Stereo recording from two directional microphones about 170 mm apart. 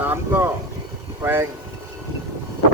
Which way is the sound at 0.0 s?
10° right (ahead or behind).